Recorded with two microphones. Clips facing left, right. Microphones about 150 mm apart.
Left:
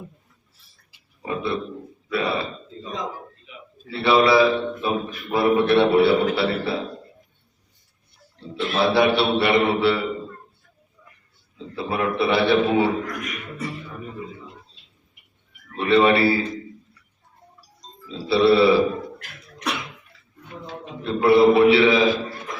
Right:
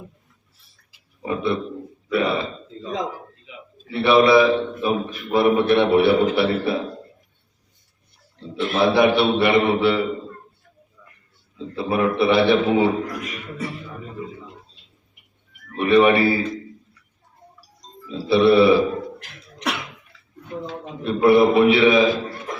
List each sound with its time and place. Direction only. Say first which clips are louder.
1.2 s a man's voice: right 3 dB; 20° right (ahead or behind)
3.8 s a man's voice: right 2 dB; 20° right (ahead or behind)
8.5 s a man's voice: right 2 dB; 20° right (ahead or behind)
11.5 s a man's voice: right 4 dB; 20° right (ahead or behind)
15.7 s a man's voice: right 2 dB; 20° right (ahead or behind)
18.1 s a man's voice: right 2 dB; 20° right (ahead or behind)
21.0 s a man's voice: right 1 dB; 20° right (ahead or behind)